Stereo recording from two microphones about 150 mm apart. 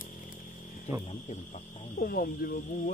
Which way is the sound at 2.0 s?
80° left.